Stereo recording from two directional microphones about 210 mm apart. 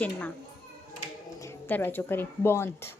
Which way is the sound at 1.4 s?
10° left (ahead or behind).